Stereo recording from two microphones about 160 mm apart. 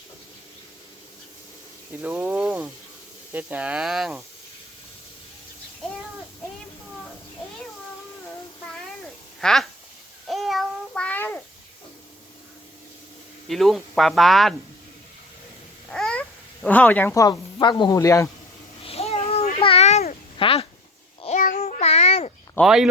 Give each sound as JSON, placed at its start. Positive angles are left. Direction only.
{"t": 1.9, "sound": "speech", "side_deg": -10}
{"t": 9.4, "sound": "speech", "side_deg": 5}
{"t": 10.2, "sound": "child singing", "side_deg": 0}
{"t": 13.5, "sound": "speech", "side_deg": 0}
{"t": 15.9, "sound": "babbling", "side_deg": 5}
{"t": 16.6, "sound": "speech", "side_deg": 10}
{"t": 17.2, "sound": "speech", "side_deg": 30}
{"t": 18.8, "sound": "a sound", "side_deg": 40}
{"t": 20.4, "sound": "speech", "side_deg": 35}
{"t": 21.2, "sound": "child singing", "side_deg": 45}
{"t": 22.6, "sound": "speech", "side_deg": -5}